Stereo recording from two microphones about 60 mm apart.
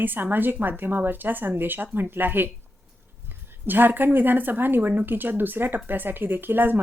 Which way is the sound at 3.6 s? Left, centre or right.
Right.